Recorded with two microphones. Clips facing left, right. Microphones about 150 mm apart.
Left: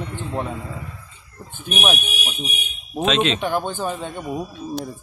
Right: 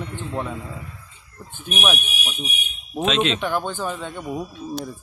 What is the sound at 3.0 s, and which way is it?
Speech, centre (ahead or behind).